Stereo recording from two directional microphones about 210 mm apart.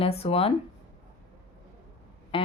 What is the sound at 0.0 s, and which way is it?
Speech, 30° left (ahead or behind).